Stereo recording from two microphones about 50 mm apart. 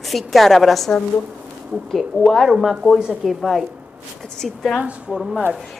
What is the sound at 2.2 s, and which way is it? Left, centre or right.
A woman's voice, centre.